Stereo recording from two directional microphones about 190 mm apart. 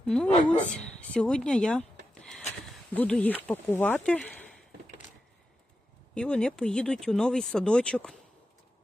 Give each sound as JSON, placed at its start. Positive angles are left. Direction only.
{"t": 0.0, "sound": "speech", "side_deg": 5}
{"t": 2.9, "sound": "speech", "side_deg": 5}
{"t": 6.1, "sound": "speech", "side_deg": 5}